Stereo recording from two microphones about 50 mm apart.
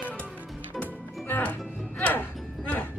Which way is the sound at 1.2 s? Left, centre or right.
Left.